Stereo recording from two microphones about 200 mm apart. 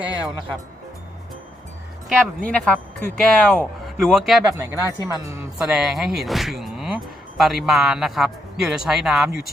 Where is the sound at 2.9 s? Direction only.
45° right (ahead or behind).